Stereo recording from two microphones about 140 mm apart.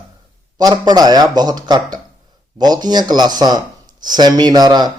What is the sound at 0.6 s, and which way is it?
Speech, 30° right (ahead or behind).